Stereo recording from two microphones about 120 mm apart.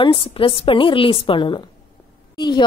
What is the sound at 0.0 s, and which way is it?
A woman's voice, 50° left (ahead or behind).